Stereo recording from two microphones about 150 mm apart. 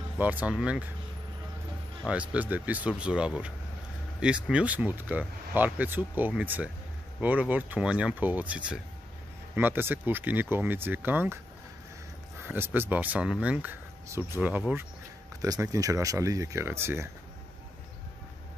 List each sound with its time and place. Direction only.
0.2 s speech: 10° right (ahead or behind)
2.0 s speech: 10° right (ahead or behind)
12.4 s speech: 15° right (ahead or behind)